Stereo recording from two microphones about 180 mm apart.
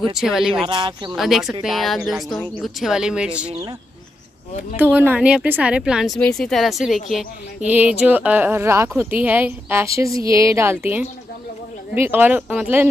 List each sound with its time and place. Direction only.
0.1 s a woman's voice: centre (ahead or behind)
0.7 s speech: 25° right (ahead or behind)
1.1 s a woman's voice: centre (ahead or behind)
4.7 s a woman's voice: 10° right (ahead or behind)